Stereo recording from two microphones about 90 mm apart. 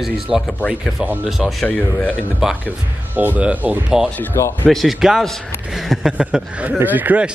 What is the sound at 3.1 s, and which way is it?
Speech, 20° right (ahead or behind).